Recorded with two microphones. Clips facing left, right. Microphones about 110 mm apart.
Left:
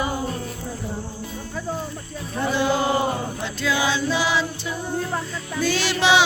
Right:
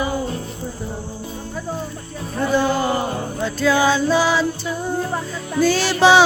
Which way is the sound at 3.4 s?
40° right (ahead or behind).